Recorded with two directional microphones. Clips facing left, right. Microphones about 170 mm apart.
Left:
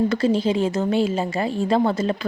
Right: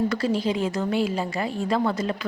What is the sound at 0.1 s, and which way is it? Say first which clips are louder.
A woman's voice: left 4 dB; 25° left (ahead or behind).